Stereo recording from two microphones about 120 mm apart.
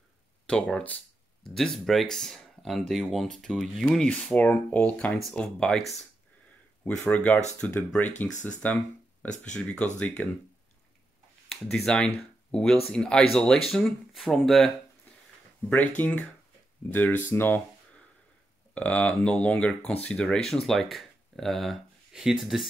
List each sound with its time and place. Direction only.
0.5 s speech: 5° left (ahead or behind)
7.1 s speech: 10° left (ahead or behind)
8.3 s speech: 90° left
9.4 s speech: 10° left (ahead or behind)
11.4 s speech: 5° left (ahead or behind)
16.0 s speech: 15° left (ahead or behind)
17.3 s a sound: 15° left (ahead or behind)
18.8 s speech: 10° left (ahead or behind)